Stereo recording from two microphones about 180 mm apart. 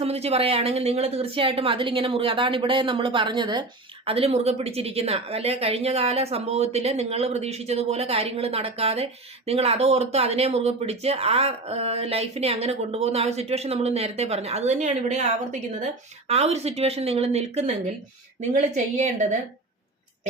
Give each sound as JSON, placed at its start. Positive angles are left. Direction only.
{"t": 0.0, "sound": "a woman's voice", "side_deg": -35}
{"t": 16.3, "sound": "a woman's voice", "side_deg": -35}
{"t": 18.9, "sound": "a woman's voice", "side_deg": -40}